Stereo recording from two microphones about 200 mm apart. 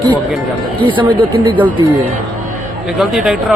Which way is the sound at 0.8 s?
25° right (ahead or behind).